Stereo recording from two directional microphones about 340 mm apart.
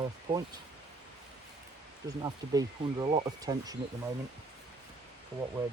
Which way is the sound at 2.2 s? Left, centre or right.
Centre.